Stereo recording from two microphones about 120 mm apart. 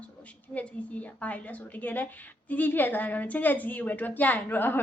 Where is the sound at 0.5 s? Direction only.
10° left (ahead or behind).